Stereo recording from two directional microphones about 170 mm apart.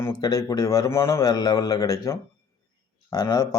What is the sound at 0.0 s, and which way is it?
Speech, 20° left (ahead or behind).